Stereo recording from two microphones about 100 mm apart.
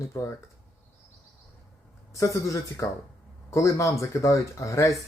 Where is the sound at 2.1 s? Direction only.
30° left (ahead or behind).